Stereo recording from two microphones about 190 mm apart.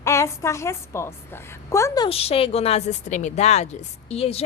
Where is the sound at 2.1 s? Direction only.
30° left (ahead or behind).